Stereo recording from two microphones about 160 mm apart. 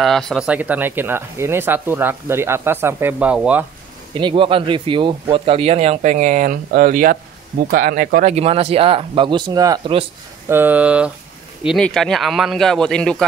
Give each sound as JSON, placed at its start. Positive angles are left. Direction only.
{"t": 0.0, "sound": "speech", "side_deg": 0}
{"t": 4.1, "sound": "speech", "side_deg": -30}
{"t": 8.3, "sound": "speech", "side_deg": -40}
{"t": 10.5, "sound": "speech", "side_deg": -10}